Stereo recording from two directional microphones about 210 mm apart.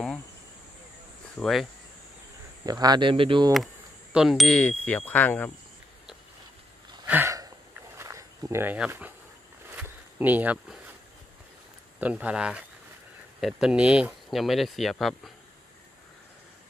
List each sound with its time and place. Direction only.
1.4 s speech: centre (ahead or behind)
2.6 s speech: 20° right (ahead or behind)
3.5 s speech: centre (ahead or behind)
7.1 s a sound: 10° right (ahead or behind)
8.0 s speech: 15° right (ahead or behind)
9.8 s a sound: 10° right (ahead or behind)
12.0 s speech: 5° right (ahead or behind)